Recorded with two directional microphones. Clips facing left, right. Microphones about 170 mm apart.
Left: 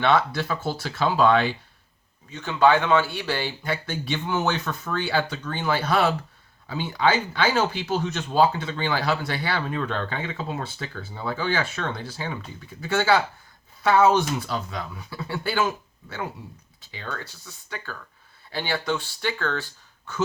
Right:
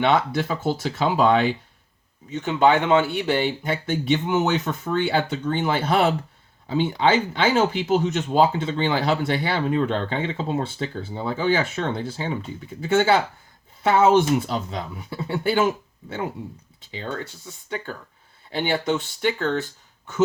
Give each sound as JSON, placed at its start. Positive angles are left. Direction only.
{"t": 0.0, "sound": "speech", "side_deg": -20}